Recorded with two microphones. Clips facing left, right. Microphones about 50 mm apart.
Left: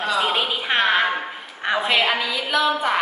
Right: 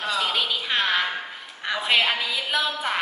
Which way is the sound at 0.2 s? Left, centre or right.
Left.